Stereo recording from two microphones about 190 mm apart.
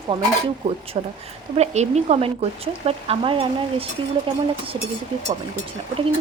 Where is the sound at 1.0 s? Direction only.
35° right (ahead or behind).